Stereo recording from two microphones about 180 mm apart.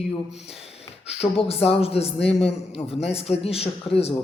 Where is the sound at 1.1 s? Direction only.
35° left (ahead or behind).